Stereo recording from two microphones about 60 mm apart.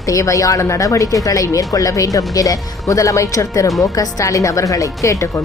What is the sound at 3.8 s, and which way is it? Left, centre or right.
Speech, left.